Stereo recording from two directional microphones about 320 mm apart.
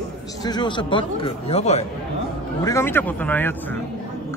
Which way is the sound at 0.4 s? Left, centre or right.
Centre.